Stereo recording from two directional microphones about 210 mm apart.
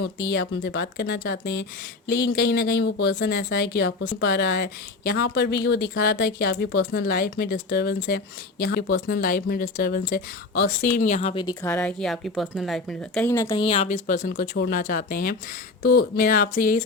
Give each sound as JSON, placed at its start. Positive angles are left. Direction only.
{"t": 0.3, "sound": "speech", "side_deg": 55}
{"t": 10.9, "sound": "speech", "side_deg": 35}
{"t": 11.6, "sound": "speech", "side_deg": 10}
{"t": 14.5, "sound": "speech", "side_deg": 50}